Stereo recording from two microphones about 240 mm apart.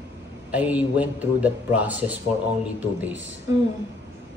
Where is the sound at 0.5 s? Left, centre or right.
Centre.